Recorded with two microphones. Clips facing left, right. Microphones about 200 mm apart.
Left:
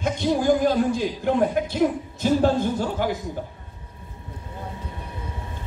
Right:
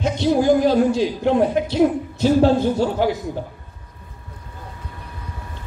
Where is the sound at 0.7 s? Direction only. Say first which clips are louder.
Right 4 dB; 50° left (ahead or behind).